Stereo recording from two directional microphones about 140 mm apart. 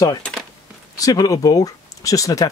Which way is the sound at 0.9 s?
25° left (ahead or behind).